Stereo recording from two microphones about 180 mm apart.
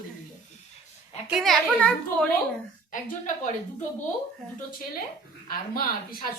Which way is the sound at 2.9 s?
45° left (ahead or behind).